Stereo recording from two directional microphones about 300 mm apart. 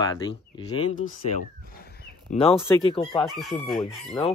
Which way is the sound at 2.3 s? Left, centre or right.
Centre.